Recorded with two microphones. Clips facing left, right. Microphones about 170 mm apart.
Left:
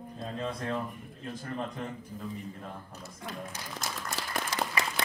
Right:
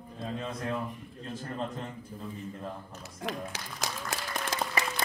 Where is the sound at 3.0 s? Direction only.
75° right (ahead or behind).